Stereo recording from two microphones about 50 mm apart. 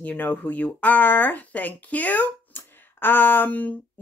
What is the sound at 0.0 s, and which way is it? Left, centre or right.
Speech, left.